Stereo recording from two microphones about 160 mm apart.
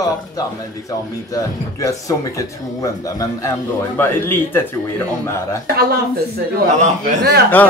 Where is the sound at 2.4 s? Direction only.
20° left (ahead or behind).